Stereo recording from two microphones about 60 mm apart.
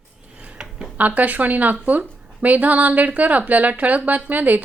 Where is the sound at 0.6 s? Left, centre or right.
Centre.